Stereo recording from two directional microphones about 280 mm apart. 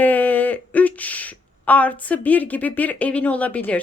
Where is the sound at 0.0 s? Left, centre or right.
Centre.